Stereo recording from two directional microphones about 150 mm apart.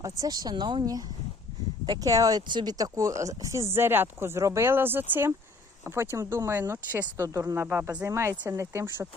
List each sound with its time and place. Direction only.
0.0 s speech: 25° right (ahead or behind)